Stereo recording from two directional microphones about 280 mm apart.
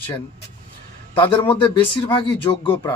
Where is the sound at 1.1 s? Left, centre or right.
Centre.